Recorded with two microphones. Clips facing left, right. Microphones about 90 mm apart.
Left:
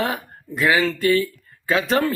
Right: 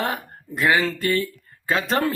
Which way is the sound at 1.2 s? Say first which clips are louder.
Left 1 dB; centre (ahead or behind).